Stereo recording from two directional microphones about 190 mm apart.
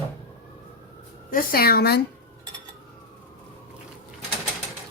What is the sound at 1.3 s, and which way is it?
Speech, 50° left (ahead or behind).